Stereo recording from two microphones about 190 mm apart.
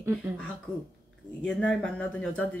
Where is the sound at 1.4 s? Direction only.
5° left (ahead or behind).